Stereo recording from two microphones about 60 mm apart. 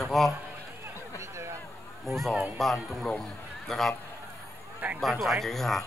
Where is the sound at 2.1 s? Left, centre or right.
Centre.